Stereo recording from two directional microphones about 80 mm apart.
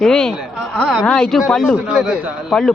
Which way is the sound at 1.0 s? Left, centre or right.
Centre.